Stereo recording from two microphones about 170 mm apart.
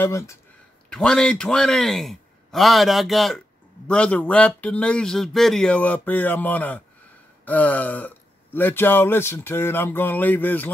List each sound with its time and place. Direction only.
0.0 s speech: 15° left (ahead or behind)
0.8 s a man's voice: 5° left (ahead or behind)